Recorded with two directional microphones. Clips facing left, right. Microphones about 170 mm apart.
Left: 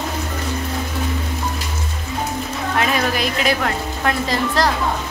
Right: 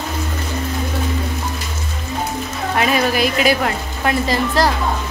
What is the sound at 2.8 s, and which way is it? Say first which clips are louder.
Speech: right 4 dB; 5° right (ahead or behind).